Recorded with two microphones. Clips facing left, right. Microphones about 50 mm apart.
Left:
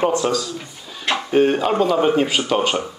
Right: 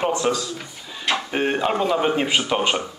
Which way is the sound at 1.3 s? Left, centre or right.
Centre.